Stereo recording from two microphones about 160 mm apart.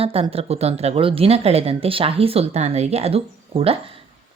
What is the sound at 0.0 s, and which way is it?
Speech, 35° right (ahead or behind).